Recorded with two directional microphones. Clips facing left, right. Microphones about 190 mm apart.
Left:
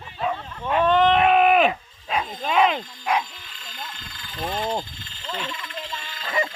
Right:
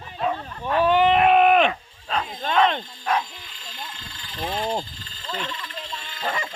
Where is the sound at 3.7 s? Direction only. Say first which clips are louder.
Even; 30° right (ahead or behind).